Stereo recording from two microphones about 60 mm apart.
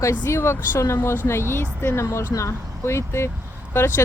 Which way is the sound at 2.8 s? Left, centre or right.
Left.